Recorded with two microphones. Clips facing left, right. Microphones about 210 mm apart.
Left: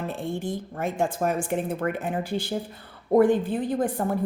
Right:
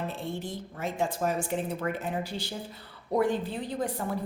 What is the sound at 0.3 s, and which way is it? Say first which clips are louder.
A woman's voice: left 6 dB; 50° left (ahead or behind).